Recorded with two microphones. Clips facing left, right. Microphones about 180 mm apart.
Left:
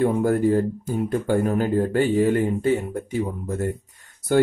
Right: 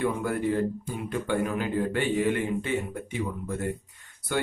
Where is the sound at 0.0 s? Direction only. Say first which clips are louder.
Left 8 dB; 40° left (ahead or behind).